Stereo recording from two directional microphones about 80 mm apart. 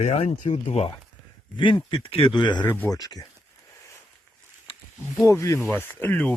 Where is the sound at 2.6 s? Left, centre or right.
Left.